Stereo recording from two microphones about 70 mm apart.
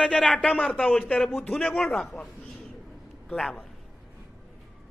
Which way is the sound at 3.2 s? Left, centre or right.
Centre.